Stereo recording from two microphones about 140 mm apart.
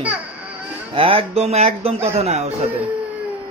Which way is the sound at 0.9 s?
40° right (ahead or behind).